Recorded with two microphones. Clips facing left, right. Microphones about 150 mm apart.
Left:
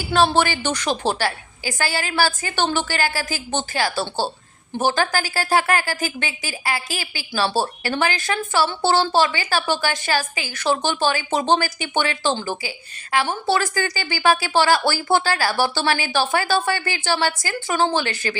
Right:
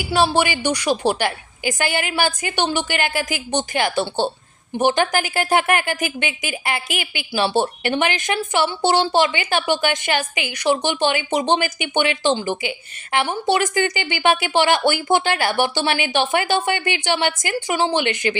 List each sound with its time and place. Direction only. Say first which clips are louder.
0.0 s a woman's voice: even; 10° right (ahead or behind)